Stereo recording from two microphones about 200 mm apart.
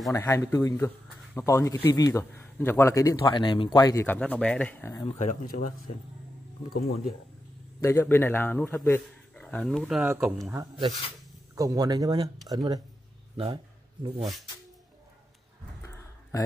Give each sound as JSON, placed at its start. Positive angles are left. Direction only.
{"t": 0.1, "sound": "speech", "side_deg": 15}
{"t": 5.2, "sound": "speech", "side_deg": 40}
{"t": 7.8, "sound": "speech", "side_deg": 10}
{"t": 14.0, "sound": "speech", "side_deg": -20}
{"t": 15.8, "sound": "a sound", "side_deg": 15}